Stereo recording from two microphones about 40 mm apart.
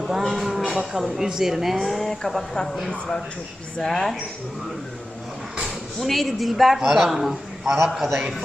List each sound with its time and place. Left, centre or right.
0.1 s a sound: centre
0.9 s speech: centre
3.8 s speech: centre
5.6 s speech: centre